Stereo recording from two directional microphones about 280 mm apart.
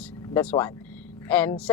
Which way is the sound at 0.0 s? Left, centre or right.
Centre.